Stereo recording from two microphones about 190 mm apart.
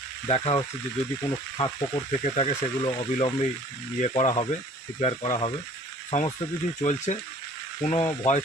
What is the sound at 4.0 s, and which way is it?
Speech, 35° left (ahead or behind).